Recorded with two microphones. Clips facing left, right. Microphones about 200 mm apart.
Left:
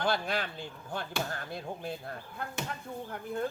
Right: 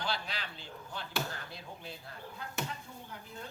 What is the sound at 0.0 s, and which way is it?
Speech, 50° left (ahead or behind).